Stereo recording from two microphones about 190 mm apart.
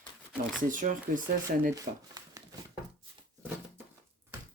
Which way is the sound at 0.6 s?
45° right (ahead or behind).